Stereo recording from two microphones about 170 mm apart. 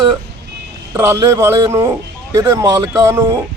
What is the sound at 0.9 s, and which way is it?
Speech, 20° right (ahead or behind).